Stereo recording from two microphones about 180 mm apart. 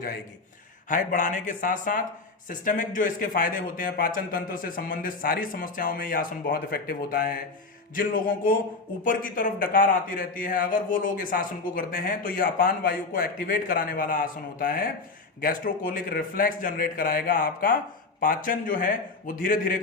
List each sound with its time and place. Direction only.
0.9 s a man's voice: 45° left (ahead or behind)